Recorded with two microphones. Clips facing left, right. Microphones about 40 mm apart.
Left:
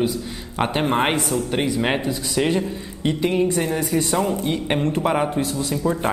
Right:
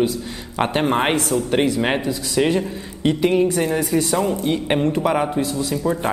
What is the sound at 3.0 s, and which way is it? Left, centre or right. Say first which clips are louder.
A woman's voice: right 3 dB; centre.